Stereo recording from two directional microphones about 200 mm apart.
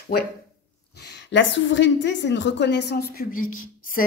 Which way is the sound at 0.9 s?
55° left (ahead or behind).